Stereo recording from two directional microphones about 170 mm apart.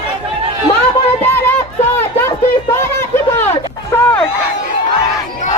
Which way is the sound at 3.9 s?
10° left (ahead or behind).